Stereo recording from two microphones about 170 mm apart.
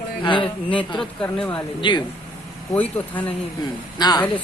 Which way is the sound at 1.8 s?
30° left (ahead or behind).